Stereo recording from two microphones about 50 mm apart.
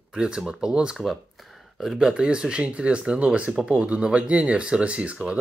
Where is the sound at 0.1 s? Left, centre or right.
Centre.